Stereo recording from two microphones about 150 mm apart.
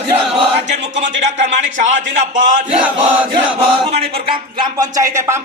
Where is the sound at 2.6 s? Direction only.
5° right (ahead or behind).